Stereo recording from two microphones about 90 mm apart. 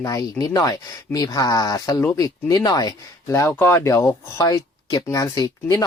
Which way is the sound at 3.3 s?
30° left (ahead or behind).